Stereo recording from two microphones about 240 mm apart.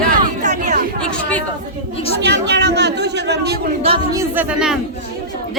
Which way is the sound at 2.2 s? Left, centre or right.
Right.